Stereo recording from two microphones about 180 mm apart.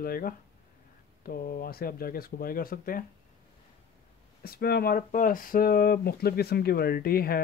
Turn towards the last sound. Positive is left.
turn(degrees=55)  # may be behind; listen again after turning